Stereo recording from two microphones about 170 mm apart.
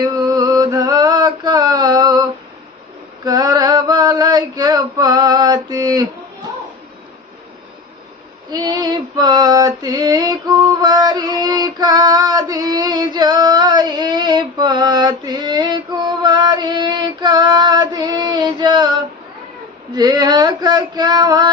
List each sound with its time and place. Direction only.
0.0 s a sound: 25° right (ahead or behind)
3.2 s female singing: 25° right (ahead or behind)
8.4 s female singing: 25° right (ahead or behind)
20.0 s male singing: 25° right (ahead or behind)